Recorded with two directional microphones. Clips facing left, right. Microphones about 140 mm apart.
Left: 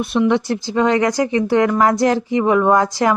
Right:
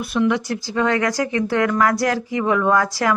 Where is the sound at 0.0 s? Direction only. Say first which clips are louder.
Left 3 dB; 25° left (ahead or behind).